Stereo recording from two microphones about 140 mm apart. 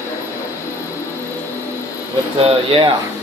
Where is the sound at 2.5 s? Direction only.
40° right (ahead or behind).